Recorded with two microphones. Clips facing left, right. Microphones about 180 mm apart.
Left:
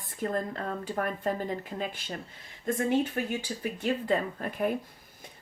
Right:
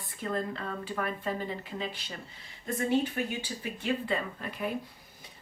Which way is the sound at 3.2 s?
45° left (ahead or behind).